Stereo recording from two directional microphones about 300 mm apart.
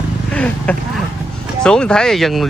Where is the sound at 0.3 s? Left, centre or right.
Centre.